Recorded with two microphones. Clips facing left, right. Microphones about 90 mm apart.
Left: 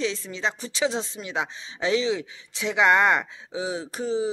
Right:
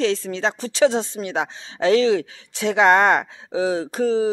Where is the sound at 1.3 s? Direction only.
50° right (ahead or behind).